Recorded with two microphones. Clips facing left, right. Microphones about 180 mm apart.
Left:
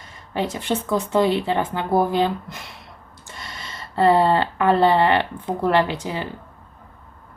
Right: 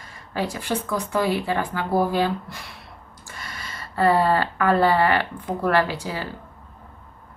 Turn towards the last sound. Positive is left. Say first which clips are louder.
# left 2 dB
turn(degrees=20)  # may be behind; listen again after turning